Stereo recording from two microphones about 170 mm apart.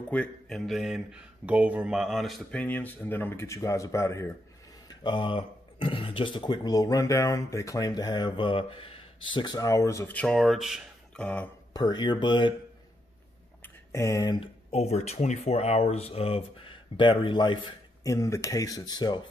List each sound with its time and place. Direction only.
0.1 s speech: 5° left (ahead or behind)
4.8 s speech: 25° left (ahead or behind); by 11.5 s 5° left (ahead or behind)
11.7 s speech: 25° left (ahead or behind)
13.6 s a sound: 15° left (ahead or behind)
14.7 s speech: 40° left (ahead or behind)